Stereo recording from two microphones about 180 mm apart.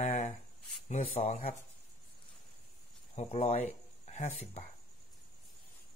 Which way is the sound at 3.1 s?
35° left (ahead or behind).